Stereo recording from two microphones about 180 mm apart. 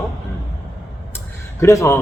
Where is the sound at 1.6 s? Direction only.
15° left (ahead or behind).